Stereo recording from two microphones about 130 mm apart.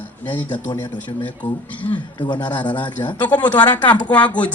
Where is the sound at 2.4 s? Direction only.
10° left (ahead or behind).